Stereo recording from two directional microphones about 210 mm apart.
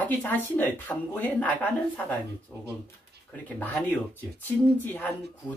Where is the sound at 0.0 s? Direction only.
10° left (ahead or behind).